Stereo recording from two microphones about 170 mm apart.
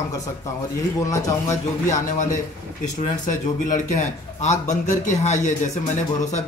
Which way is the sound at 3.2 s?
45° left (ahead or behind).